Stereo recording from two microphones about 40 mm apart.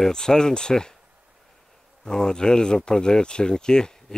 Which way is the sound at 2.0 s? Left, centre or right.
Centre.